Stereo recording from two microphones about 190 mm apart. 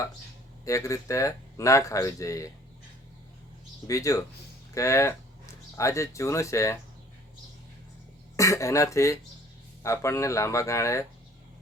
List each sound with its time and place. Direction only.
0.6 s speech: 15° left (ahead or behind)
3.8 s speech: 15° left (ahead or behind)
8.4 s speech: 15° left (ahead or behind)